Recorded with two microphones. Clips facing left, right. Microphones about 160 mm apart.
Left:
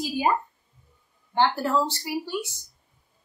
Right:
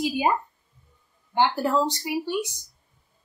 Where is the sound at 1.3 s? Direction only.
15° right (ahead or behind).